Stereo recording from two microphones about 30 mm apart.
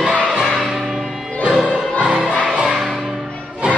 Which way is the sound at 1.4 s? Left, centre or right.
Right.